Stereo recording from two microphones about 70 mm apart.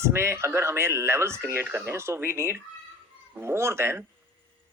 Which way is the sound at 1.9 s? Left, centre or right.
Right.